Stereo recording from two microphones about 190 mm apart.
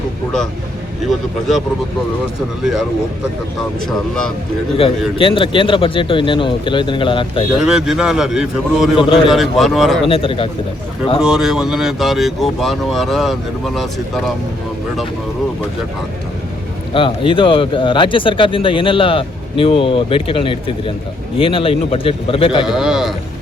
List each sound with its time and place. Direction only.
3.8 s speech: 5° left (ahead or behind)
4.8 s speech: 30° left (ahead or behind)
7.6 s speech: 5° right (ahead or behind)
9.0 s speech: 30° left (ahead or behind)
9.2 s speech: centre (ahead or behind)
10.1 s speech: 30° left (ahead or behind)
11.2 s speech: 5° right (ahead or behind)
16.9 s speech: 25° left (ahead or behind)
22.6 s speech: centre (ahead or behind)